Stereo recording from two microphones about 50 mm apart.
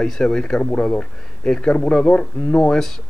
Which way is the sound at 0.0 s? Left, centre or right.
Centre.